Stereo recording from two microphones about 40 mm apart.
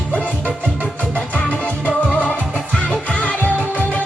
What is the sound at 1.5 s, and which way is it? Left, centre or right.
Music, left.